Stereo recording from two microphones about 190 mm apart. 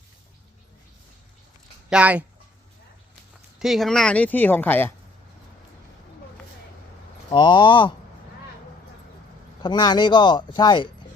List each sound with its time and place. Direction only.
1.9 s speech: 5° right (ahead or behind)
3.6 s speech: centre (ahead or behind)
7.3 s speech: 25° left (ahead or behind)
9.6 s speech: 25° left (ahead or behind)